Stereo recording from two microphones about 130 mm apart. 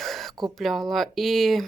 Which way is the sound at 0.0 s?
Centre (ahead or behind).